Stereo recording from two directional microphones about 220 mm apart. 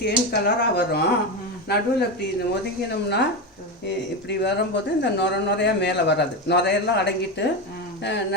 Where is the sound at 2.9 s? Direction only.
50° left (ahead or behind).